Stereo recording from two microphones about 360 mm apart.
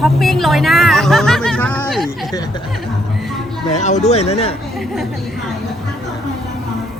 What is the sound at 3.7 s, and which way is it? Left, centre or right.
Speech, centre.